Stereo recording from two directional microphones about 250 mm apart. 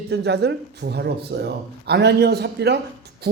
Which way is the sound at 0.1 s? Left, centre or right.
Right.